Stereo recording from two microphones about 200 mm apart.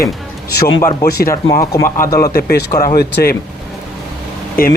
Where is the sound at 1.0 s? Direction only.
50° left (ahead or behind).